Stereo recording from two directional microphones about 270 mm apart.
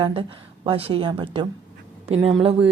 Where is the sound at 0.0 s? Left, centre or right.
Centre.